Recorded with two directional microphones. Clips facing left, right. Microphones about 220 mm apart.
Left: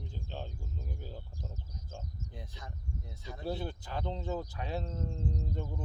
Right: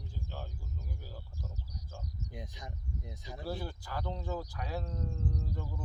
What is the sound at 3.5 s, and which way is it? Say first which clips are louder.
Speech: left 3 dB; 20° left (ahead or behind).